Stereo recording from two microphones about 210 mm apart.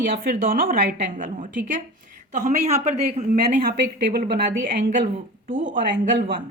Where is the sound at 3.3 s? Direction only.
45° right (ahead or behind).